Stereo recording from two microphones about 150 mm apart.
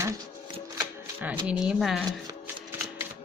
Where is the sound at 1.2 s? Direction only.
10° right (ahead or behind).